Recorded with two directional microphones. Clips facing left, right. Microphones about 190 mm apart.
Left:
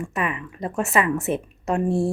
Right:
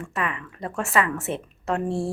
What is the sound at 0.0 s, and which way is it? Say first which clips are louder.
A woman's voice: left 3 dB; 20° left (ahead or behind).